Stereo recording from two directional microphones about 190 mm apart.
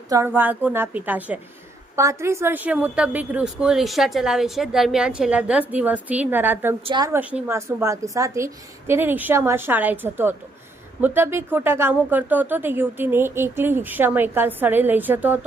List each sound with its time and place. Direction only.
0.1 s a woman's voice: 15° right (ahead or behind)
6.8 s a woman's voice: 25° right (ahead or behind)
7.1 s speech: 10° right (ahead or behind)